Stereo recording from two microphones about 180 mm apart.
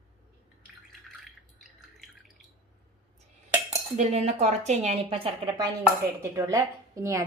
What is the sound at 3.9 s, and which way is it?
A woman's voice, 40° right (ahead or behind).